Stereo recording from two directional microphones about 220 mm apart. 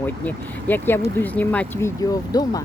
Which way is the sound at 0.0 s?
10° left (ahead or behind).